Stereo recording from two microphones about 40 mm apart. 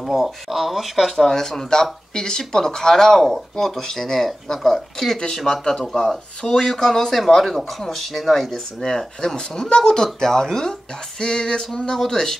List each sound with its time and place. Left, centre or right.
0.1 s speech: centre
1.3 s speech: centre
8.8 s speech: centre